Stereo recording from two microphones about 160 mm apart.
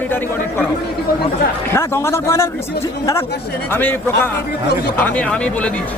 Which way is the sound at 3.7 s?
15° left (ahead or behind).